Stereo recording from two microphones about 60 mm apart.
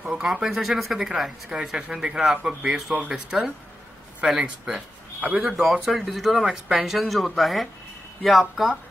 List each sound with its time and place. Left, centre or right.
0.0 s speech: centre